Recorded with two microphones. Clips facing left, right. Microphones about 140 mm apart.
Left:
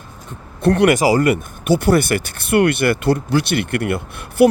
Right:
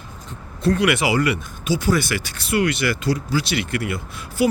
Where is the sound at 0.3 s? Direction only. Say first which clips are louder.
Left 4 dB; 60° left (ahead or behind).